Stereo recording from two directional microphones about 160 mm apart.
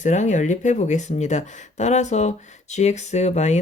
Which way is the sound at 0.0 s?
50° left (ahead or behind).